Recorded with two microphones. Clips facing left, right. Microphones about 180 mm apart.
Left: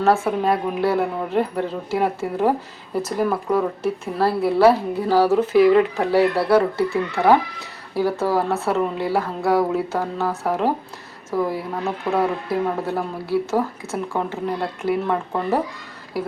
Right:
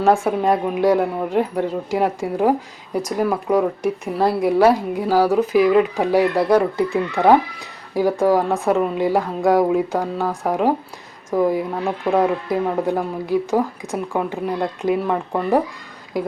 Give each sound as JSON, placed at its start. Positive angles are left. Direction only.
{"t": 0.0, "sound": "speech", "side_deg": -15}